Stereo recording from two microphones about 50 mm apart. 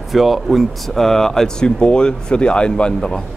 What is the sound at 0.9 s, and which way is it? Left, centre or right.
Speech, centre.